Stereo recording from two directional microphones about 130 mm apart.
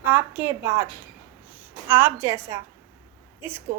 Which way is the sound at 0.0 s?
15° right (ahead or behind).